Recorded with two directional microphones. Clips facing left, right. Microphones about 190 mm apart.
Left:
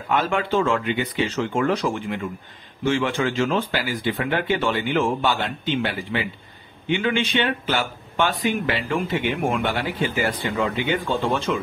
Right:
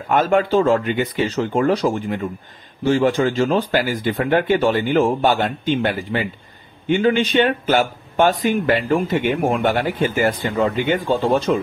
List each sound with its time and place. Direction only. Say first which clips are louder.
0.1 s speech: right 6 dB; 45° right (ahead or behind)